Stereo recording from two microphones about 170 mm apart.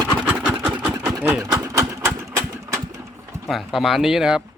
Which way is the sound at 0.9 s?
15° right (ahead or behind).